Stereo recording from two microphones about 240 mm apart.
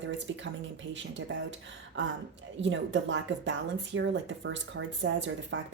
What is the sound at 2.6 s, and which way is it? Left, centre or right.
Speech, right.